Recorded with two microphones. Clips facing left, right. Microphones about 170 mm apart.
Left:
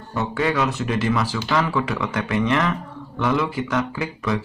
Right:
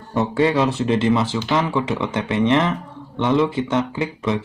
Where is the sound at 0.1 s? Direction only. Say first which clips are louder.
Right 5 dB; 25° right (ahead or behind).